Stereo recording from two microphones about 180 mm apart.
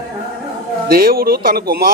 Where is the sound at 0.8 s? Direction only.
55° right (ahead or behind).